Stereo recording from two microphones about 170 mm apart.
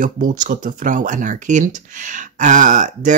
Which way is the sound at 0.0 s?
50° right (ahead or behind).